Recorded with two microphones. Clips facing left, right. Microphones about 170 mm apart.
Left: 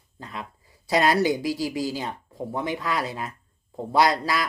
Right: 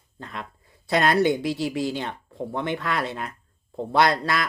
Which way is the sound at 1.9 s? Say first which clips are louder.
Right 1 dB; 10° left (ahead or behind).